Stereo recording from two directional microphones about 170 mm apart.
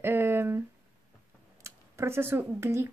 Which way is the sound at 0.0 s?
15° right (ahead or behind).